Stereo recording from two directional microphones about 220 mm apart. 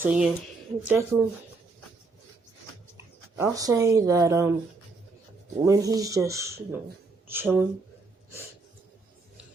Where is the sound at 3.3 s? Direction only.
15° right (ahead or behind).